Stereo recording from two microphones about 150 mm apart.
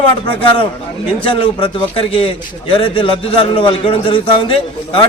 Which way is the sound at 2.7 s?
35° left (ahead or behind).